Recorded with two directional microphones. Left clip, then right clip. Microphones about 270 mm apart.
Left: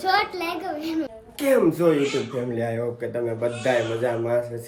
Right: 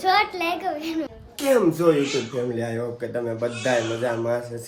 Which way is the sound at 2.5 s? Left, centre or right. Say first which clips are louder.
Left 2 dB; centre.